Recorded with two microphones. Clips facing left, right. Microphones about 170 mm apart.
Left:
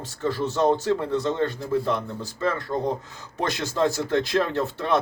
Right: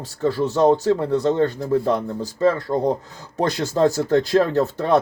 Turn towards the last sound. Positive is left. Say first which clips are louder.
# right 5 dB
turn(degrees=-40)  # may be behind; listen again after turning